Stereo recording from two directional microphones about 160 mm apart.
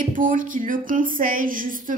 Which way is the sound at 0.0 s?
55° right (ahead or behind).